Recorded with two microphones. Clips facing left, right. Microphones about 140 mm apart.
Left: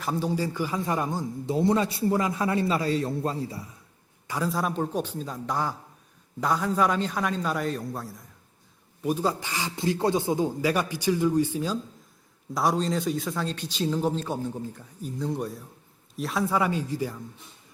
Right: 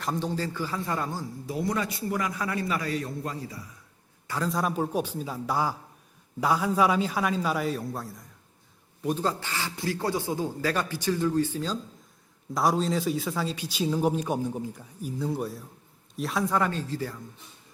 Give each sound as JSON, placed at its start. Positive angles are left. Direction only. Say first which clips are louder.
{"t": 0.0, "sound": "speech", "louder": "left 2 dB", "side_deg": 10}
{"t": 4.3, "sound": "a man's voice", "louder": "left 1 dB", "side_deg": 10}
{"t": 4.5, "sound": "a man's voice", "louder": "right 2 dB", "side_deg": -5}
{"t": 12.5, "sound": "a man's voice", "louder": "even", "side_deg": 0}